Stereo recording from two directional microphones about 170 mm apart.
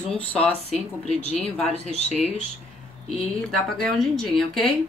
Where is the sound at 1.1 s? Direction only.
40° left (ahead or behind).